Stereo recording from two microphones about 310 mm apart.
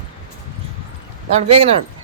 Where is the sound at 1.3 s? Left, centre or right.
Centre.